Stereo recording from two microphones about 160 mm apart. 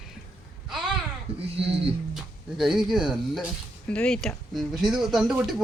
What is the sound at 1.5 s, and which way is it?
Speech, 35° right (ahead or behind).